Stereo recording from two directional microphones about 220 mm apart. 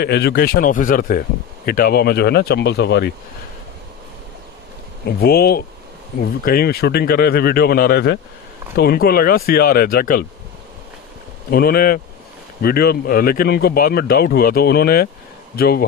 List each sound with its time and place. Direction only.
0.0 s speech: 50° left (ahead or behind)
5.0 s speech: 45° left (ahead or behind)
11.5 s speech: 45° left (ahead or behind)